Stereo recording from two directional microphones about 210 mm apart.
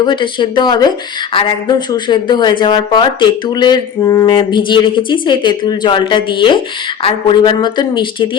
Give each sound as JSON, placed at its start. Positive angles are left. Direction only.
{"t": 0.0, "sound": "speech", "side_deg": 20}